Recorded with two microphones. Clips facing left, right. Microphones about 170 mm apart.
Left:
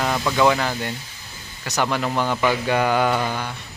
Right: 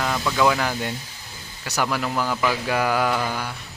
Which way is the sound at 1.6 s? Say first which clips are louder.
Left 2 dB; 5° right (ahead or behind).